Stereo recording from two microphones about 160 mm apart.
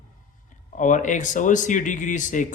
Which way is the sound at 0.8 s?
55° left (ahead or behind).